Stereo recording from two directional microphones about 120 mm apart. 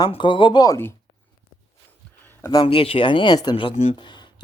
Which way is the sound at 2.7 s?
50° left (ahead or behind).